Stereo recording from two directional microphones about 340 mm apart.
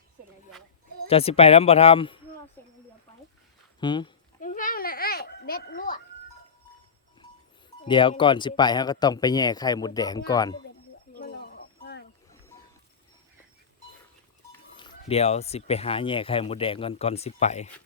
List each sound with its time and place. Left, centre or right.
1.0 s speech: centre
2.6 s a sound: centre
3.8 s goat: centre
7.9 s speech: centre
11.2 s a sound: left
14.8 s speech: centre